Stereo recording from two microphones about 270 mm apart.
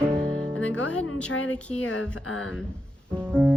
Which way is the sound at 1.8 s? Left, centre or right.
Left.